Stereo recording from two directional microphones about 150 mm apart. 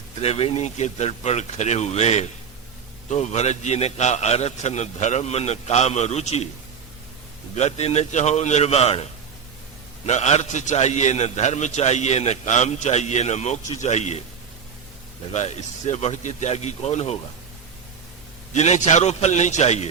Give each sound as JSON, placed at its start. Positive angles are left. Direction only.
{"t": 0.2, "sound": "a man's voice", "side_deg": 40}
{"t": 7.5, "sound": "a man's voice", "side_deg": 45}
{"t": 10.1, "sound": "a man's voice", "side_deg": 50}
{"t": 15.3, "sound": "a man's voice", "side_deg": 50}
{"t": 18.5, "sound": "a man's voice", "side_deg": 50}